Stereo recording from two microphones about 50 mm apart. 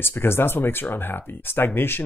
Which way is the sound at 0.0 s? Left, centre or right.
Left.